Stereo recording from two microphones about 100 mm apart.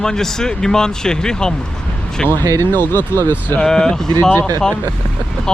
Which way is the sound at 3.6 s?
5° left (ahead or behind).